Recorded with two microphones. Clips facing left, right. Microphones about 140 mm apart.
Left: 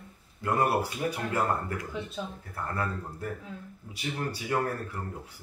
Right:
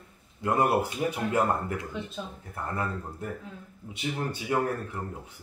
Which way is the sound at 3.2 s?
20° right (ahead or behind).